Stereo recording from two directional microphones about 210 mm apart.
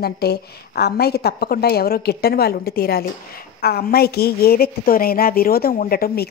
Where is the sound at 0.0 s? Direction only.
50° left (ahead or behind).